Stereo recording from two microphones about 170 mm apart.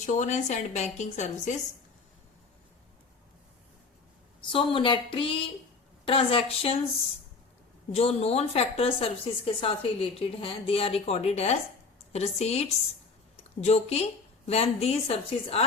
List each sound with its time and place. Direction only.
0.0 s a woman's voice: 45° left (ahead or behind)
4.5 s a woman's voice: 30° left (ahead or behind)
7.9 s a woman's voice: 35° left (ahead or behind)